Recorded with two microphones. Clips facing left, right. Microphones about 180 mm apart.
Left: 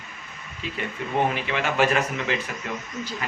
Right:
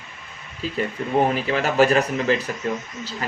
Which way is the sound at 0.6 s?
35° right (ahead or behind).